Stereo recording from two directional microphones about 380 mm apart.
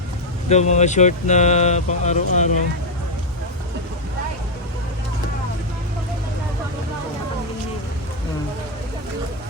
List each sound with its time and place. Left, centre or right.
0.4 s speech: centre